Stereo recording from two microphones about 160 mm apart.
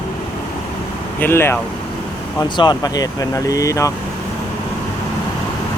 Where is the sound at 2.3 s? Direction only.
30° left (ahead or behind).